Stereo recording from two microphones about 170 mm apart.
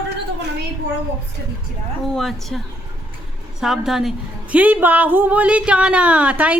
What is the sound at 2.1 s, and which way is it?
Speech, centre (ahead or behind).